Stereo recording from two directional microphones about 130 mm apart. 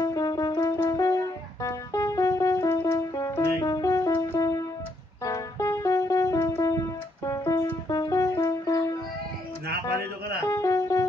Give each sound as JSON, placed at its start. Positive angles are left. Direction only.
{"t": 0.0, "sound": "music", "side_deg": 25}
{"t": 10.5, "sound": "music", "side_deg": 25}